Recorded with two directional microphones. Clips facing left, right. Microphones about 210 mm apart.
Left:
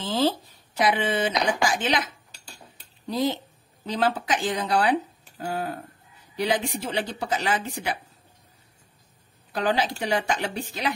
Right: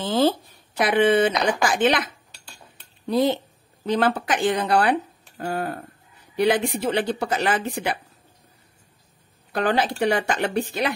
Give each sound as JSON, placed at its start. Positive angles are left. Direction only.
{"t": 0.0, "sound": "speech", "side_deg": -55}
{"t": 3.1, "sound": "speech", "side_deg": -60}
{"t": 9.5, "sound": "speech", "side_deg": -60}